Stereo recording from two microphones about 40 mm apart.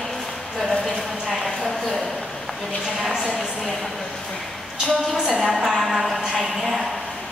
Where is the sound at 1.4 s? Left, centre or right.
Centre.